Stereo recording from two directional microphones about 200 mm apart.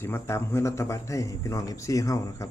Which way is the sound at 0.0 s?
10° left (ahead or behind).